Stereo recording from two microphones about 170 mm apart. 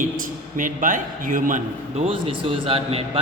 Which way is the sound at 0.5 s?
50° right (ahead or behind).